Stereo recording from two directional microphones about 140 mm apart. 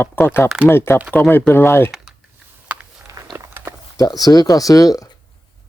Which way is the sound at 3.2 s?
20° right (ahead or behind).